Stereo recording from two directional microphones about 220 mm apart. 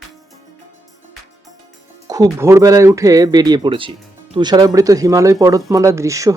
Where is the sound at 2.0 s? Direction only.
15° right (ahead or behind).